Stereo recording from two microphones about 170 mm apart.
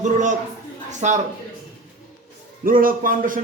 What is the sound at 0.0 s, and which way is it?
A man's voice, 45° right (ahead or behind).